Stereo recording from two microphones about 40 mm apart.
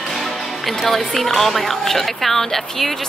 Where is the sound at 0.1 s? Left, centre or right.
Centre.